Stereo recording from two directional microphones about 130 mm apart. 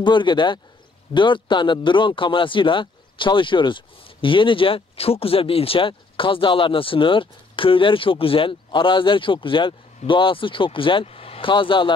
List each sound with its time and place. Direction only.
0.0 s speech: 35° left (ahead or behind)